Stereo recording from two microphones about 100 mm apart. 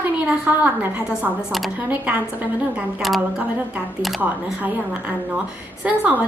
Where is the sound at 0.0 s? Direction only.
15° right (ahead or behind).